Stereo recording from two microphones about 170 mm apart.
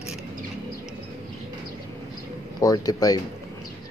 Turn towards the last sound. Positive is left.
turn(degrees=20)  # may be behind; listen again after turning